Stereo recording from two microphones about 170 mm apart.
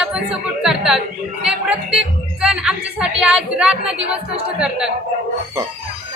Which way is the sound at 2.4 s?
5° right (ahead or behind).